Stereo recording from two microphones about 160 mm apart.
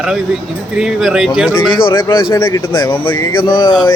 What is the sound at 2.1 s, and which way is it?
Speech, 30° left (ahead or behind).